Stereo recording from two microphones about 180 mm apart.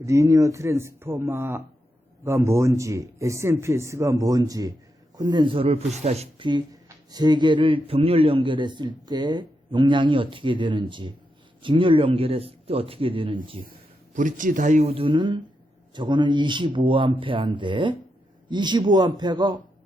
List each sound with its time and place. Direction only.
0.0 s speech: 15° right (ahead or behind)
13.7 s speech: 45° right (ahead or behind); by 19.5 s 25° right (ahead or behind)